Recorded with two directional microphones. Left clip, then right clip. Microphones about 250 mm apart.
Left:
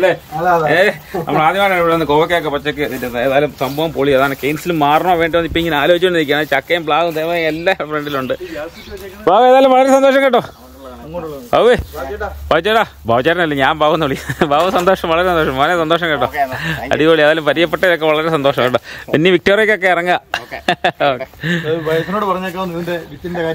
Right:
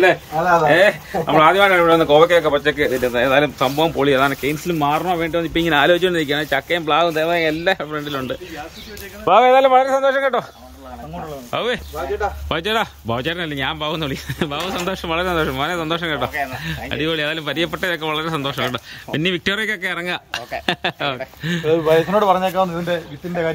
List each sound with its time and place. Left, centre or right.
0.7 s speech: centre
9.2 s speech: left
11.5 s speech: left
12.4 s speech: centre
21.6 s a man's voice: right